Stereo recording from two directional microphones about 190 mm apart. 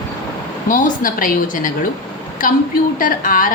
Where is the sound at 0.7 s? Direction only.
45° left (ahead or behind).